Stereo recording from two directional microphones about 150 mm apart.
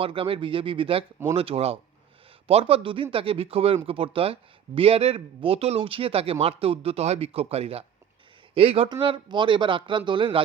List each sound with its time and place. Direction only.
0.0 s speech: 35° right (ahead or behind)